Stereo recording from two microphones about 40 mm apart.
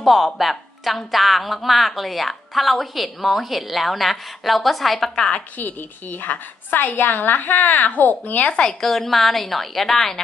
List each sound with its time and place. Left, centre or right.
0.0 s a woman's voice: centre
5.6 s a woman's voice: left
8.5 s speech: left
8.8 s a woman's voice: centre